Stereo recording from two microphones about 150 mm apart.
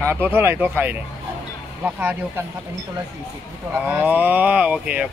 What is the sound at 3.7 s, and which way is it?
Speech, 10° right (ahead or behind).